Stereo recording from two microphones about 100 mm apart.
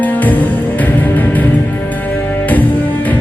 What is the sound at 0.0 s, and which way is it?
Music, 15° left (ahead or behind).